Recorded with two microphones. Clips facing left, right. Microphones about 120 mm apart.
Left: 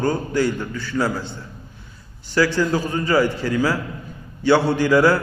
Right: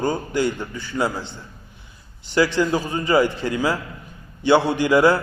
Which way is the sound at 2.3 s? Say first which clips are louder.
Even; 20° right (ahead or behind).